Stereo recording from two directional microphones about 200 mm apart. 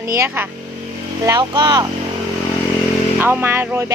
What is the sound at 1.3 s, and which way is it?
Speech, 20° right (ahead or behind).